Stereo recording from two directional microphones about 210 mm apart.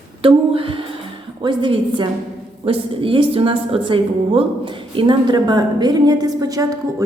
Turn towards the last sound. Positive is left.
turn(degrees=-15)  # may be behind; listen again after turning